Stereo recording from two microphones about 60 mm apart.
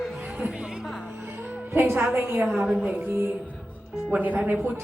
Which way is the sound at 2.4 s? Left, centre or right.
Centre.